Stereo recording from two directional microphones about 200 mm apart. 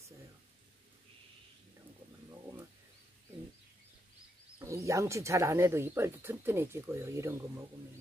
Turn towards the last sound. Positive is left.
turn(degrees=-15)  # may be behind; listen again after turning